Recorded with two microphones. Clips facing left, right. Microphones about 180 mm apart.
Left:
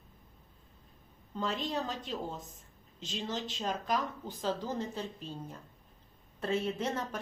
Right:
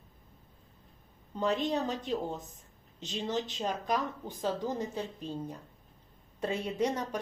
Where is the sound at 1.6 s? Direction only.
15° right (ahead or behind).